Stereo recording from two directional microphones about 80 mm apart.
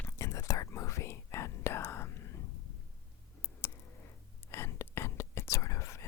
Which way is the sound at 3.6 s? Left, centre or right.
Left.